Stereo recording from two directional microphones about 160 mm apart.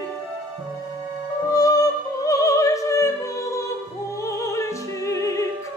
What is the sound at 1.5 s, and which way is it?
Music, 20° left (ahead or behind).